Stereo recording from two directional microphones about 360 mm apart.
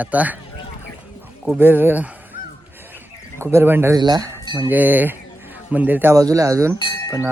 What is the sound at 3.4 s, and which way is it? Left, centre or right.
Speech, centre.